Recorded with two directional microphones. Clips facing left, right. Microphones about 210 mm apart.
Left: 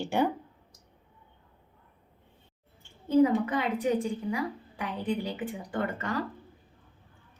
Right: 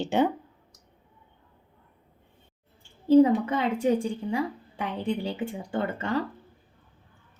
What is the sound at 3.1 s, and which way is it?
A woman's voice, 30° right (ahead or behind).